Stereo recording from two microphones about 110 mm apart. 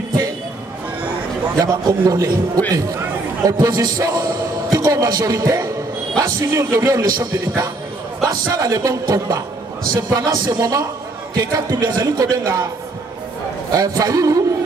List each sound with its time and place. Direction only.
1.6 s a man's voice: 35° right (ahead or behind)
13.7 s speech: 35° right (ahead or behind)